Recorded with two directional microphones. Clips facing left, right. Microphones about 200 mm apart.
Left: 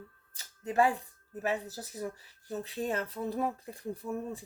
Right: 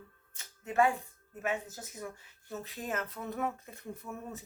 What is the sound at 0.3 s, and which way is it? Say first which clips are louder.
Speech: left 1 dB; 35° left (ahead or behind).